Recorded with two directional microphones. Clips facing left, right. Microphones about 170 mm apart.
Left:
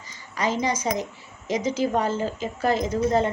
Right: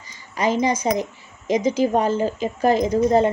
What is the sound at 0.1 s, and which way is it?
A woman's voice, 15° right (ahead or behind).